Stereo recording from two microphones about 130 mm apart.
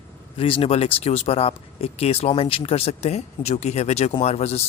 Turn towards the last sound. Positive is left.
turn(degrees=55)  # may be behind; listen again after turning